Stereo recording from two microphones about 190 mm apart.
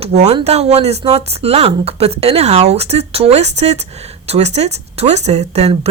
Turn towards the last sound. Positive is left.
turn(degrees=-35)  # may be behind; listen again after turning